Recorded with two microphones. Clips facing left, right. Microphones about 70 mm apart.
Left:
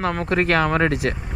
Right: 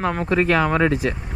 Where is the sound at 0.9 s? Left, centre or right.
Left.